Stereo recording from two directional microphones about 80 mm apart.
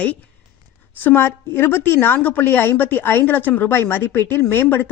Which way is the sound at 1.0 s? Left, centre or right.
Left.